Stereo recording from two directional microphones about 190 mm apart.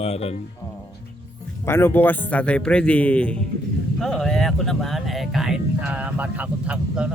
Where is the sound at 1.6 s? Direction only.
10° left (ahead or behind).